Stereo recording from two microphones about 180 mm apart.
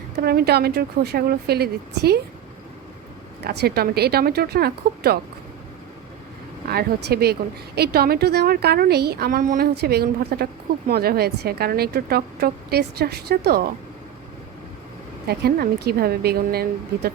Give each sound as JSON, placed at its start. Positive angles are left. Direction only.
{"t": 0.2, "sound": "a woman's voice", "side_deg": -60}
{"t": 3.4, "sound": "a woman's voice", "side_deg": -65}
{"t": 6.7, "sound": "a woman's voice", "side_deg": -60}
{"t": 15.3, "sound": "a woman's voice", "side_deg": -60}